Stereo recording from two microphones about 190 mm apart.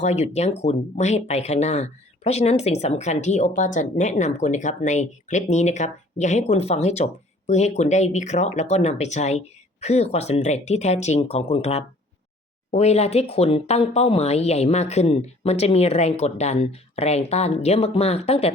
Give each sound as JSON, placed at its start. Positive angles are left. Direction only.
{"t": 0.0, "sound": "speech", "side_deg": 35}